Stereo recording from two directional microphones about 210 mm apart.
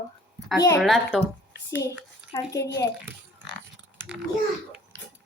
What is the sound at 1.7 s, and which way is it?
A child's voice, 15° left (ahead or behind).